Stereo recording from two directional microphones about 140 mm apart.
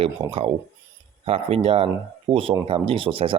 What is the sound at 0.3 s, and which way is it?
Speech, 40° right (ahead or behind).